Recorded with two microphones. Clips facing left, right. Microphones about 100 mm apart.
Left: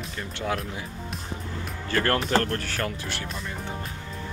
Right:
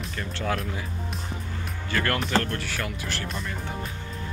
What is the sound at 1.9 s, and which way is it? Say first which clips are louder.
Speech: left 2 dB; 35° left (ahead or behind).